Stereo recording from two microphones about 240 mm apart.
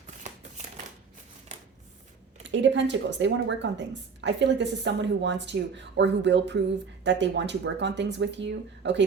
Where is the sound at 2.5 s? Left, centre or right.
Right.